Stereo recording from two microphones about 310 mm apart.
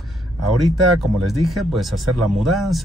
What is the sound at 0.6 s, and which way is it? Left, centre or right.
Speech, centre.